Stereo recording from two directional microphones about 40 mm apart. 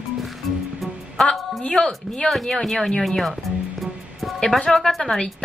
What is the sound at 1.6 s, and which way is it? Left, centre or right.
Speech, left.